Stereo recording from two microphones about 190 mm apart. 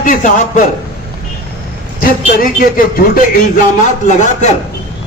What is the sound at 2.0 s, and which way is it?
Speech, 50° left (ahead or behind).